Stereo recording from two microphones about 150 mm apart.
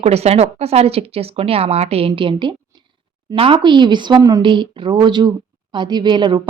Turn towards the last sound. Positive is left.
turn(degrees=-30)  # may be behind; listen again after turning